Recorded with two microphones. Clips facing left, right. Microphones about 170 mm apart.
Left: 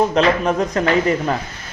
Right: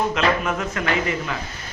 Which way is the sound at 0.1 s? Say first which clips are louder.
Left 5 dB; 35° left (ahead or behind).